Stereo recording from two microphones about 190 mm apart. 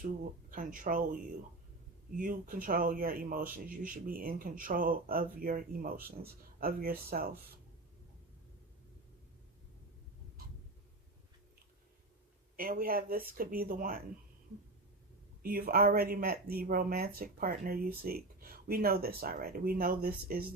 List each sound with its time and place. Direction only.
0.5 s speech: 45° right (ahead or behind)
2.1 s speech: 45° right (ahead or behind)
12.5 s speech: 50° right (ahead or behind)
15.4 s speech: 50° right (ahead or behind)